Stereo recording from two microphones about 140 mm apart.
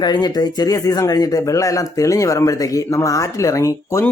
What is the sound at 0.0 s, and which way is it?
Speech, 30° left (ahead or behind).